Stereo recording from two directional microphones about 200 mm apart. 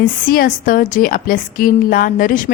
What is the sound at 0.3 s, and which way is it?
A woman's voice, 45° left (ahead or behind).